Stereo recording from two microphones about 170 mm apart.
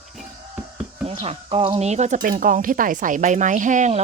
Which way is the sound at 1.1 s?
35° right (ahead or behind).